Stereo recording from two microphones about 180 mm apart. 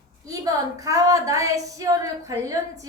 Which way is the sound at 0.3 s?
20° right (ahead or behind).